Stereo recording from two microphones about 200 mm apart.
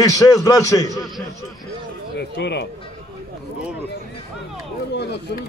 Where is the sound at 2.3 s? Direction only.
55° left (ahead or behind).